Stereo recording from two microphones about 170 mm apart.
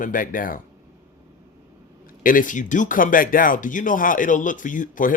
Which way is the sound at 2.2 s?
50° left (ahead or behind).